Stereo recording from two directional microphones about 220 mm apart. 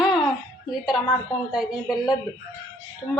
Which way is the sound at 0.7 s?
Centre (ahead or behind).